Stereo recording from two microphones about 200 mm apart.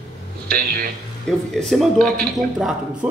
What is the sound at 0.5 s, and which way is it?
Speech, 45° right (ahead or behind).